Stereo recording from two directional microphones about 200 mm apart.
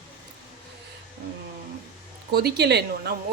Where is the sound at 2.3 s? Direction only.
55° right (ahead or behind).